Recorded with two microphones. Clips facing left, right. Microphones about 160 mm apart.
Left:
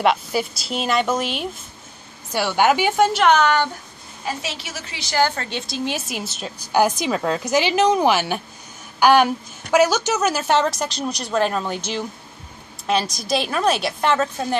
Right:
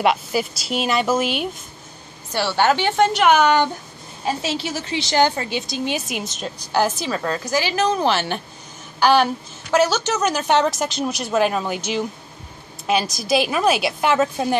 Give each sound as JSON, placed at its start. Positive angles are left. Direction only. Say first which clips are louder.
{"t": 0.0, "sound": "a woman's voice", "louder": "even", "side_deg": 0}
{"t": 2.3, "sound": "a woman's voice", "louder": "left 1 dB", "side_deg": 10}
{"t": 3.3, "sound": "speech", "louder": "right 2 dB", "side_deg": -15}
{"t": 4.2, "sound": "a woman's voice", "louder": "right 5 dB", "side_deg": -30}
{"t": 5.6, "sound": "a woman's voice", "louder": "right 1 dB", "side_deg": 0}